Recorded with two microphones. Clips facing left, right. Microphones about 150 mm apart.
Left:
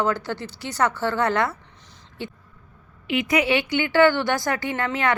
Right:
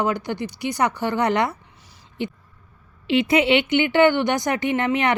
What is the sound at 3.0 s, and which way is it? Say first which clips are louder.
A woman's voice: right 4 dB; 30° right (ahead or behind).